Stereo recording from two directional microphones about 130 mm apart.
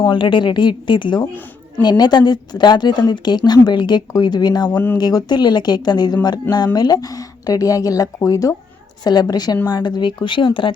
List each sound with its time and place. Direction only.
0.0 s a woman's voice: 40° left (ahead or behind)